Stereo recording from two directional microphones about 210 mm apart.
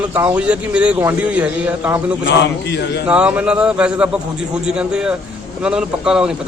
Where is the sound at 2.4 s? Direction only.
55° left (ahead or behind).